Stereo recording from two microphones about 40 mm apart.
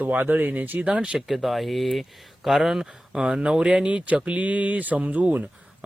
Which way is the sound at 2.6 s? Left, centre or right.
Centre.